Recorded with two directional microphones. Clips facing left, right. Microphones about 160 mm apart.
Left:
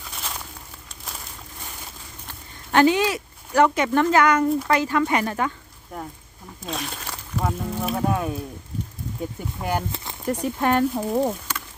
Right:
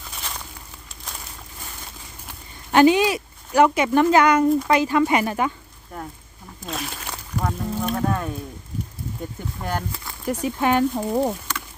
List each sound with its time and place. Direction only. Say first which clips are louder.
2.7 s speech: right 3 dB; 15° right (ahead or behind)
5.9 s speech: even; 5° left (ahead or behind)
9.6 s speech: left 2 dB; 10° left (ahead or behind)
9.9 s speech: left 1 dB; 20° left (ahead or behind)
10.4 s speech: right 1 dB; centre (ahead or behind)